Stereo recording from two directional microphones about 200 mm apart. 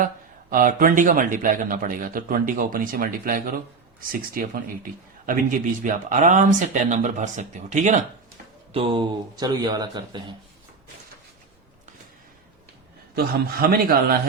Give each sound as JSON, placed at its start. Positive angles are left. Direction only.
{"t": 0.5, "sound": "a man's voice", "side_deg": -45}
{"t": 8.7, "sound": "speech", "side_deg": -25}
{"t": 13.1, "sound": "a man's voice", "side_deg": -50}